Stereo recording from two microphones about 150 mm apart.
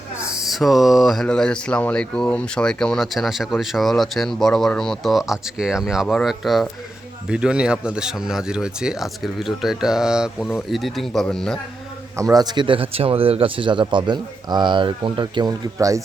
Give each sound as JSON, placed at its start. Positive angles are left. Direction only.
{"t": 0.3, "sound": "speech", "side_deg": 0}
{"t": 12.1, "sound": "speech", "side_deg": -25}